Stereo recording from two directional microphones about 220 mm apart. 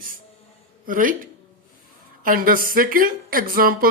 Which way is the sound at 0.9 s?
40° right (ahead or behind).